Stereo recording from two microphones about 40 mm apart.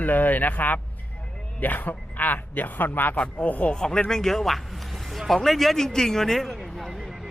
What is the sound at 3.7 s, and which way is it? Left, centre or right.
Speech, centre.